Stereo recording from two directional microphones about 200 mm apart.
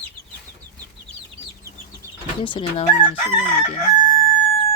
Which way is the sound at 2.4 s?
25° left (ahead or behind).